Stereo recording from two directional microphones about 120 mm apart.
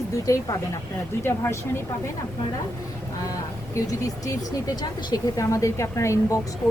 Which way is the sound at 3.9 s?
30° left (ahead or behind).